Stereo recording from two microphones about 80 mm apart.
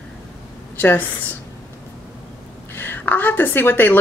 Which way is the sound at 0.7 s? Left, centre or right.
Left.